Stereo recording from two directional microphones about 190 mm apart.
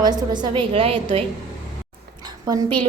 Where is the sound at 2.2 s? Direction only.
20° right (ahead or behind).